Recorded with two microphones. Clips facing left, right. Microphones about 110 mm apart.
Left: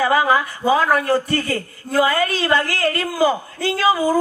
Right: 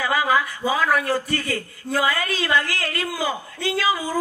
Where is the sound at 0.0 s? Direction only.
30° left (ahead or behind).